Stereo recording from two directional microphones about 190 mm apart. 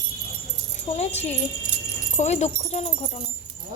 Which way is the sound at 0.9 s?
35° left (ahead or behind).